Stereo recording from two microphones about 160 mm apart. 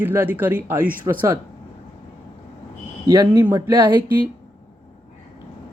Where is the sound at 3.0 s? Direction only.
25° right (ahead or behind).